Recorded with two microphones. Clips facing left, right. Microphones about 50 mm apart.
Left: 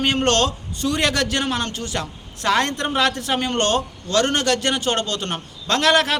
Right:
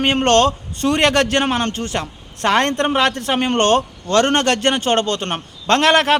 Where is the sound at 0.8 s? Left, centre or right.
Right.